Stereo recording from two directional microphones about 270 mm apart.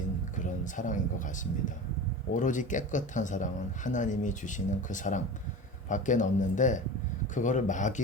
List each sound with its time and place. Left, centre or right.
0.3 s speech: left